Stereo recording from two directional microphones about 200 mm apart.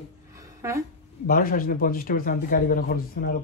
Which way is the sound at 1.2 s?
45° left (ahead or behind).